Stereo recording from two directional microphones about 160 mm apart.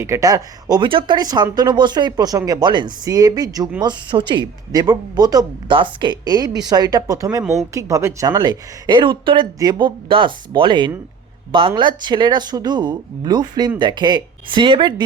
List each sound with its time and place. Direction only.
0.0 s speech: 20° right (ahead or behind)